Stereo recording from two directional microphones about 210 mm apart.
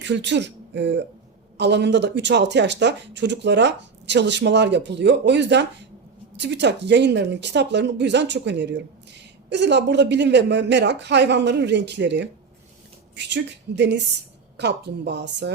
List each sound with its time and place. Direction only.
0.0 s speech: 55° right (ahead or behind)